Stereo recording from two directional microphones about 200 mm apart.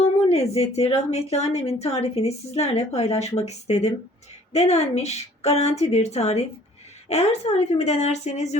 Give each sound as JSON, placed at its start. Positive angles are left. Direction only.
{"t": 0.0, "sound": "speech", "side_deg": 30}